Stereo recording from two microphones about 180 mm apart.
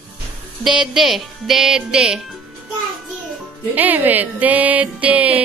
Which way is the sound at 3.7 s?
10° right (ahead or behind).